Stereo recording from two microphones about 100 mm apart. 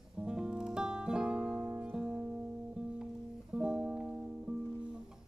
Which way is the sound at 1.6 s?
20° right (ahead or behind).